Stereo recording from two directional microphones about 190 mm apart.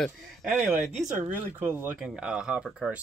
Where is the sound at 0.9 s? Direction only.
40° right (ahead or behind).